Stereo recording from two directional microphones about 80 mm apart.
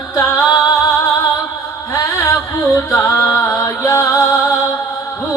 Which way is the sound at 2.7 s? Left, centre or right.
Left.